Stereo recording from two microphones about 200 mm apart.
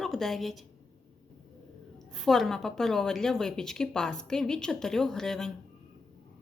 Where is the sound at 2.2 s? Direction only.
Centre (ahead or behind).